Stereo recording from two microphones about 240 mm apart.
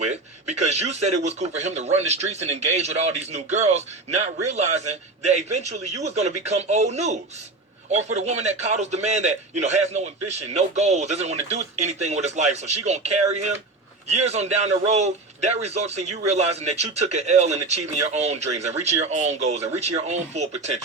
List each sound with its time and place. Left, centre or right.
0.0 s speech: right